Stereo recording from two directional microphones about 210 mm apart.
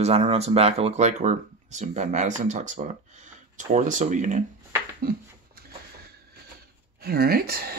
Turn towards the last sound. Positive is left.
turn(degrees=-45)  # may be behind; listen again after turning